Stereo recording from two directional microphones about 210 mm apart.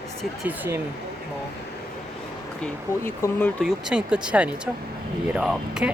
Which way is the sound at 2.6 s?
10° left (ahead or behind).